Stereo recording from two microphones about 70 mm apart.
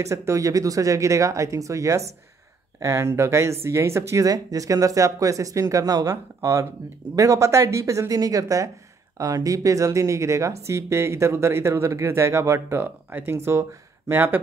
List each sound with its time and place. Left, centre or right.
0.0 s speech: right
14.1 s speech: right